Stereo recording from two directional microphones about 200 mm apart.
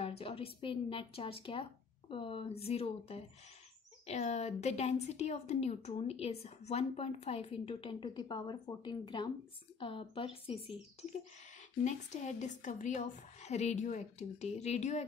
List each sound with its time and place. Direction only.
0.0 s a woman's voice: 30° left (ahead or behind)